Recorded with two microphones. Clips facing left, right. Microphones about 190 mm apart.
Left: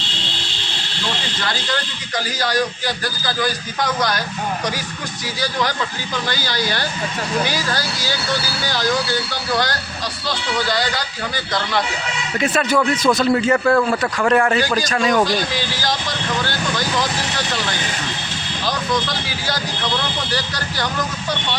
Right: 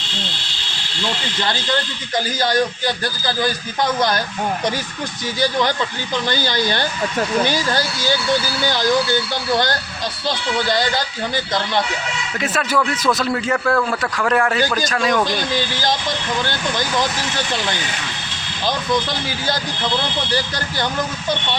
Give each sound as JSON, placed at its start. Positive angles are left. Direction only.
{"t": 2.1, "sound": "speech", "side_deg": -25}
{"t": 6.2, "sound": "speech", "side_deg": -20}
{"t": 10.7, "sound": "speech", "side_deg": -25}
{"t": 12.4, "sound": "speech", "side_deg": 0}